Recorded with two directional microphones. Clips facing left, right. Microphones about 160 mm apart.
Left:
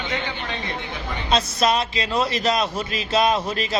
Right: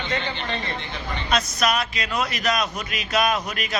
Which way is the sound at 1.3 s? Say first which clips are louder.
Left 3 dB; 25° left (ahead or behind).